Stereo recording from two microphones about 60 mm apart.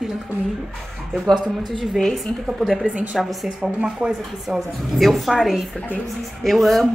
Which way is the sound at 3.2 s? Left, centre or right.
Centre.